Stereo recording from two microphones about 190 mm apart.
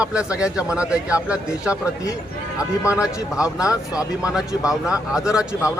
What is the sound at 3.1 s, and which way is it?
Speech, 15° left (ahead or behind).